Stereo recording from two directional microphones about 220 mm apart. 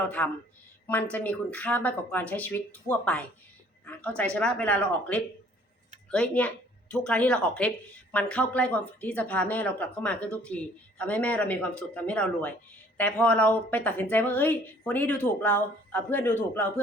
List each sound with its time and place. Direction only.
0.2 s speech: 10° left (ahead or behind)
4.4 s speech: 5° left (ahead or behind)